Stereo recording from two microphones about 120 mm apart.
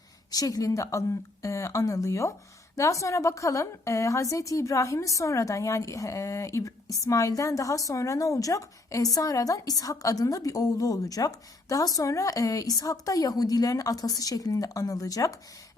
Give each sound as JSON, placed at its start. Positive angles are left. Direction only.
{"t": 0.3, "sound": "a woman's voice", "side_deg": 30}